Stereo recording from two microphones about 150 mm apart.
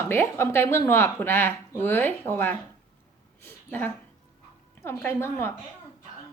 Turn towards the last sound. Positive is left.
turn(degrees=15)  # may be behind; listen again after turning